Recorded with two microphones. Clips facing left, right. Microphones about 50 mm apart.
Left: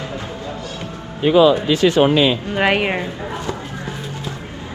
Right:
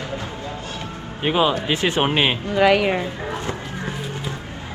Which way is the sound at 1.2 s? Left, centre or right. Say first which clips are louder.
Left 7 dB; right.